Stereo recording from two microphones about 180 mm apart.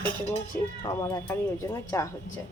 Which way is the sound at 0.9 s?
15° left (ahead or behind).